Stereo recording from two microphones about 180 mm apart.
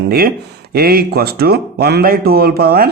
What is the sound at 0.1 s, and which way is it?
Speech, 60° right (ahead or behind).